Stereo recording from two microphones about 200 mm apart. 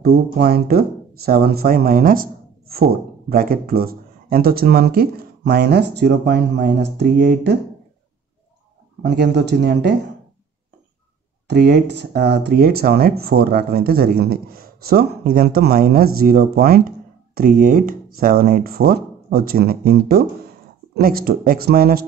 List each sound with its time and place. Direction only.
0.0 s speech: 50° right (ahead or behind)
9.0 s speech: 55° right (ahead or behind)
11.4 s speech: 55° right (ahead or behind)